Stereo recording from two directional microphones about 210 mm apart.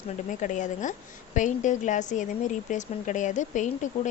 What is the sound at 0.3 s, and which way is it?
Speech, 35° left (ahead or behind).